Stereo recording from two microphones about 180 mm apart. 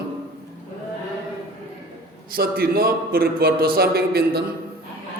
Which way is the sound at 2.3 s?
55° right (ahead or behind).